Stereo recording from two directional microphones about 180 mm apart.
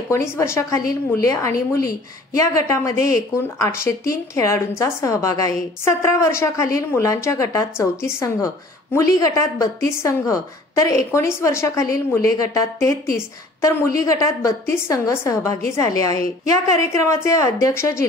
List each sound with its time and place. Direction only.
0.1 s a woman's voice: 15° left (ahead or behind)